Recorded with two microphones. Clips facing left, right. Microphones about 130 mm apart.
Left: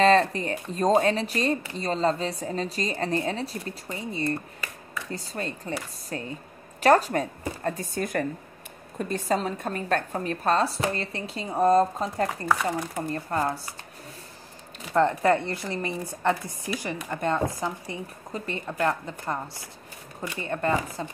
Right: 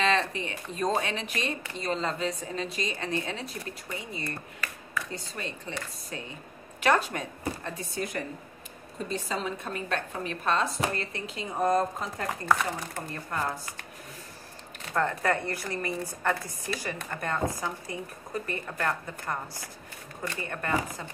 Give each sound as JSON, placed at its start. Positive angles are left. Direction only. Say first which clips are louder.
{"t": 0.0, "sound": "speech", "louder": "left 7 dB", "side_deg": 40}
{"t": 5.1, "sound": "speech", "louder": "left 4 dB", "side_deg": 40}
{"t": 15.0, "sound": "speech", "louder": "left 6 dB", "side_deg": 25}
{"t": 20.4, "sound": "speech", "louder": "left 11 dB", "side_deg": 25}